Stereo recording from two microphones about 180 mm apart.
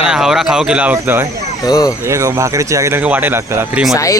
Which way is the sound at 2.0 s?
15° right (ahead or behind).